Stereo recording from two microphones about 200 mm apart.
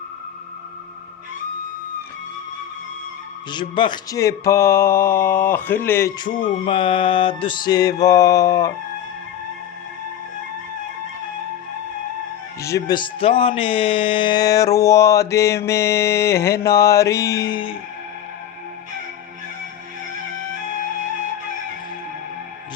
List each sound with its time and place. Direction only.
3.5 s speech: 20° left (ahead or behind)
12.6 s speech: 20° left (ahead or behind)